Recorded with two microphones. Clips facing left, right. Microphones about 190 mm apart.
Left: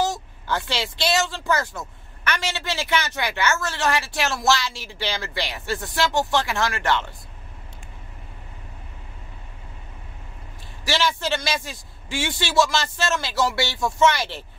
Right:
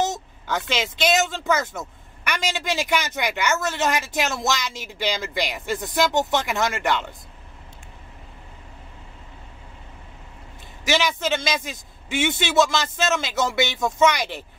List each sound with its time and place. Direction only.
0.0 s speech: 20° right (ahead or behind)
10.9 s a man's voice: 20° right (ahead or behind)